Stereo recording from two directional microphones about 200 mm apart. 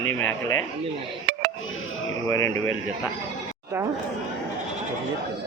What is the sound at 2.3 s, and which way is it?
Speech, 15° left (ahead or behind).